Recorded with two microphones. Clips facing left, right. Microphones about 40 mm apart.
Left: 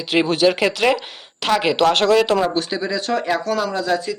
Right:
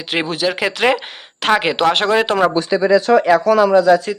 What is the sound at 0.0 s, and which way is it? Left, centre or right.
Speech, centre.